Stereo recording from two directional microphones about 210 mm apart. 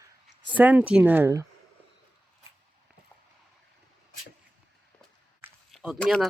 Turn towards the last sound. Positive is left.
turn(degrees=0)  # may be behind; listen again after turning